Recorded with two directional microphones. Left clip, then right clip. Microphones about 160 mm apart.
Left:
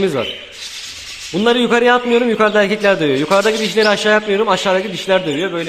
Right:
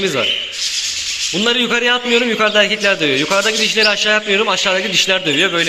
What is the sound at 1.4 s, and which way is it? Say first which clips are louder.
A man's voice: left 3 dB; 20° left (ahead or behind).